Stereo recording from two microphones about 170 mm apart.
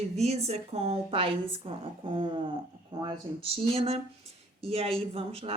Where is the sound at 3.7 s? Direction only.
35° right (ahead or behind).